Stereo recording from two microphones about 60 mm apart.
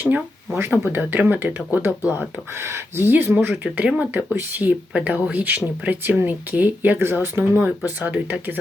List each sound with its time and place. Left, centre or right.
0.7 s speech: right
2.1 s speech: right
4.9 s speech: right
7.9 s speech: right